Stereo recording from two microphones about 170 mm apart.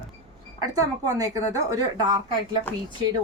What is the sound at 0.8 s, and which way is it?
Speech, 20° right (ahead or behind).